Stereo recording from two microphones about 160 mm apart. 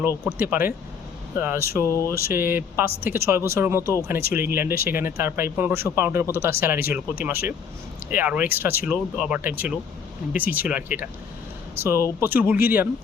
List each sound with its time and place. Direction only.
0.3 s speech: 10° right (ahead or behind)